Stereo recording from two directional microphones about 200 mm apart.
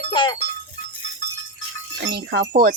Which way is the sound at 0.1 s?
25° left (ahead or behind).